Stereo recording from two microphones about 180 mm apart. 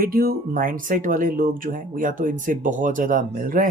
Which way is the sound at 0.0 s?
55° right (ahead or behind).